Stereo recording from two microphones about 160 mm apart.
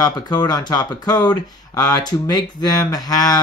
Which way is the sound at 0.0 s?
25° left (ahead or behind).